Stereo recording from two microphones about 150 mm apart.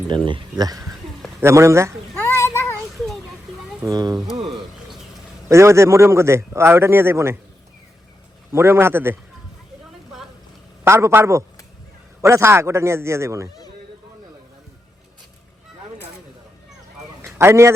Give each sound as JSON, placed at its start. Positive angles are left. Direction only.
{"t": 0.3, "sound": "speech", "side_deg": -30}
{"t": 2.1, "sound": "child singing", "side_deg": 15}
{"t": 3.8, "sound": "speech", "side_deg": -25}
{"t": 4.4, "sound": "a sound", "side_deg": -45}
{"t": 5.5, "sound": "a man's voice", "side_deg": -20}
{"t": 8.5, "sound": "a man's voice", "side_deg": -15}
{"t": 10.8, "sound": "a man's voice", "side_deg": -15}
{"t": 17.2, "sound": "a sound", "side_deg": -20}